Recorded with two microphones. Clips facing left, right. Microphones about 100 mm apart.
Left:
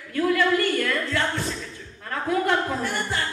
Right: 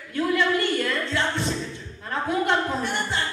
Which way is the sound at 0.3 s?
25° right (ahead or behind).